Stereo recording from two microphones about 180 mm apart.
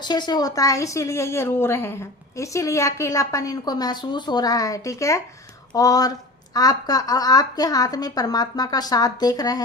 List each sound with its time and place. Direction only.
0.0 s a woman's voice: 25° left (ahead or behind)